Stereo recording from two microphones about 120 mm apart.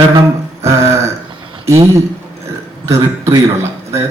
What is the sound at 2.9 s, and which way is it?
A man's voice, 25° right (ahead or behind).